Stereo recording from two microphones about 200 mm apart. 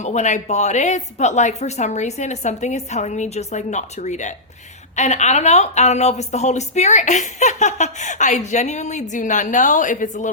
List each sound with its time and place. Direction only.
0.0 s speech: 35° left (ahead or behind)